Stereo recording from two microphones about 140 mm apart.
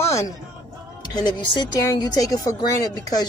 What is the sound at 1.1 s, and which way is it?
Speech, 30° left (ahead or behind).